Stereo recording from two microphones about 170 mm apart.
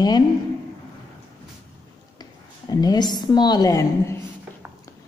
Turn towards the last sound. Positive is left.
turn(degrees=20)  # may be behind; listen again after turning